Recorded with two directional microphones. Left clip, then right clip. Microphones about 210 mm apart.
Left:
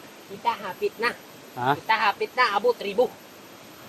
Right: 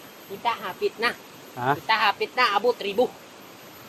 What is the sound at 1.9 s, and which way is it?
Speech, 45° right (ahead or behind).